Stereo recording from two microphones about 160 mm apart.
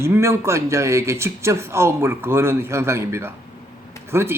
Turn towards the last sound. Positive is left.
turn(degrees=-15)  # may be behind; listen again after turning